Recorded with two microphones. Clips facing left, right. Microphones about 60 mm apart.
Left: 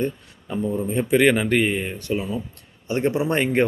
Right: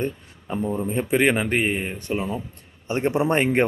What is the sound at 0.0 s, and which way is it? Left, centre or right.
A man's voice, right.